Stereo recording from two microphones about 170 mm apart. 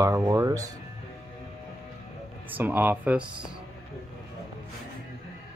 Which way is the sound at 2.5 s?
10° right (ahead or behind).